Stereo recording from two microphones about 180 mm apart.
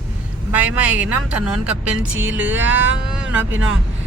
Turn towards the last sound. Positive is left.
turn(degrees=-10)  # may be behind; listen again after turning